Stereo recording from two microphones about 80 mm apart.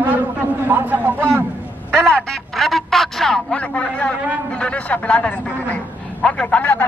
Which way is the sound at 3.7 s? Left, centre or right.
Centre.